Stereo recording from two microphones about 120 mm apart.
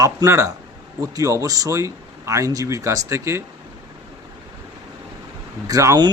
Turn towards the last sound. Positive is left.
turn(degrees=-30)  # may be behind; listen again after turning